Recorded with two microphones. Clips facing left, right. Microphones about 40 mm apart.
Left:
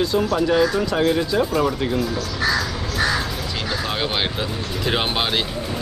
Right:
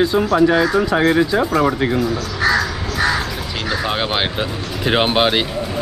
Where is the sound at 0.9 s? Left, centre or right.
Right.